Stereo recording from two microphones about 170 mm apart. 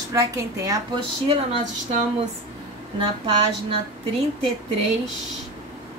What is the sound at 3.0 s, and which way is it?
Speech, 30° right (ahead or behind).